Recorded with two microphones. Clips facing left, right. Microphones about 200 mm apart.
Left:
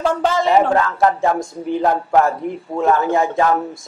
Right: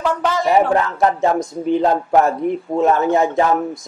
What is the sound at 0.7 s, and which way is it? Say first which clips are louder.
A man's voice: even; 20° right (ahead or behind).